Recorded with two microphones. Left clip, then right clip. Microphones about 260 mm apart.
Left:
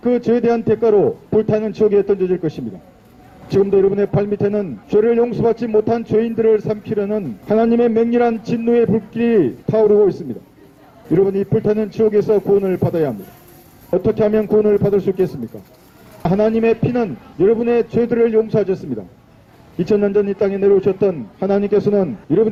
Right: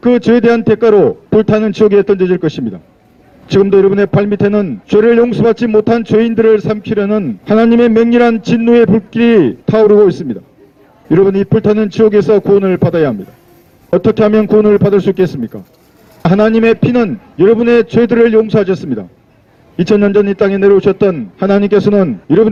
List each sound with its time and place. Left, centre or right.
0.0 s a man's voice: right